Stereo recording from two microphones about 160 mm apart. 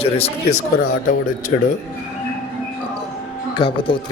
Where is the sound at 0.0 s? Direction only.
40° left (ahead or behind).